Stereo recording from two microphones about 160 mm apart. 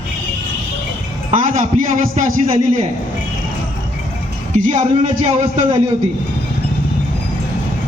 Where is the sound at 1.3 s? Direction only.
50° right (ahead or behind).